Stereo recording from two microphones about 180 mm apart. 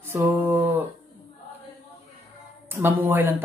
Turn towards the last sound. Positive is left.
turn(degrees=-10)  # may be behind; listen again after turning